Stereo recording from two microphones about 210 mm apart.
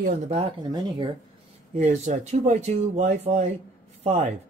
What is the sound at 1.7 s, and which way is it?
Speech, 30° right (ahead or behind).